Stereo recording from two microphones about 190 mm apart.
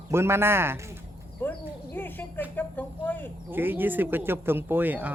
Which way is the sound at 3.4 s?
10° right (ahead or behind).